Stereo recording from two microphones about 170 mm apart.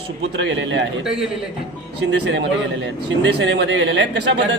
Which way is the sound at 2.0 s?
90° right.